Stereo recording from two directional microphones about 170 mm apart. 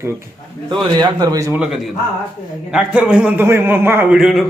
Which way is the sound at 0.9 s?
25° right (ahead or behind).